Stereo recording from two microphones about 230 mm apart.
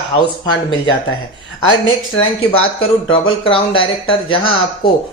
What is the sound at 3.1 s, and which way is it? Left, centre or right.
Speech, left.